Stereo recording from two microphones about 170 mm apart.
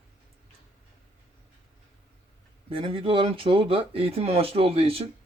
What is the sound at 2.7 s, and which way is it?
Speech, 35° right (ahead or behind).